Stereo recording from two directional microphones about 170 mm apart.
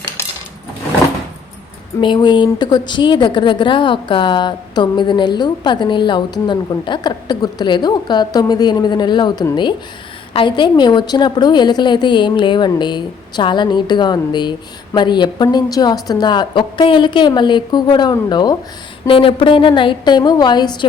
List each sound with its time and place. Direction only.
2.0 s speech: 25° left (ahead or behind)